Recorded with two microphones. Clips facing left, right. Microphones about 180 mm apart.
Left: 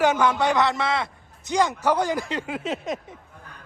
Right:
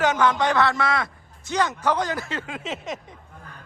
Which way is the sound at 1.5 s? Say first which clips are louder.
Left 2 dB; 10° left (ahead or behind).